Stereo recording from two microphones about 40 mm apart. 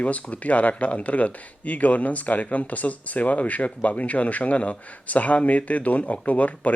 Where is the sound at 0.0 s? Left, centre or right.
Left.